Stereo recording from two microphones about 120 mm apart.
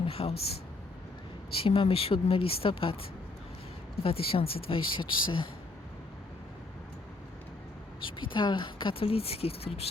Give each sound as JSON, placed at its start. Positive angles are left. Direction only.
{"t": 0.0, "sound": "speech", "side_deg": 55}
{"t": 1.5, "sound": "speech", "side_deg": 50}
{"t": 8.0, "sound": "speech", "side_deg": 40}